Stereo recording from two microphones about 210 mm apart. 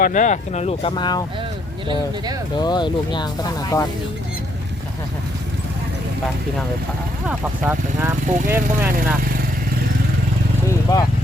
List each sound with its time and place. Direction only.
0.0 s speech: 40° left (ahead or behind); by 1.2 s 20° left (ahead or behind)
1.9 s speech: 20° right (ahead or behind)
2.6 s speech: 20° left (ahead or behind)
7.3 s speech: 5° right (ahead or behind)
10.9 s speech: 15° left (ahead or behind)